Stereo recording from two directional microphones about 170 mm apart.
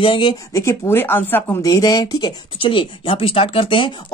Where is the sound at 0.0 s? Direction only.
30° left (ahead or behind).